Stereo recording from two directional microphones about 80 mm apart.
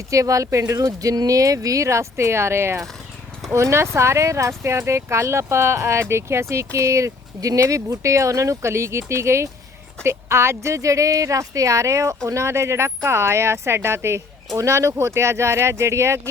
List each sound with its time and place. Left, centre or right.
0.1 s speech: right